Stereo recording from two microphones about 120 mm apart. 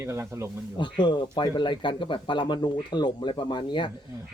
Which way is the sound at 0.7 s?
40° left (ahead or behind).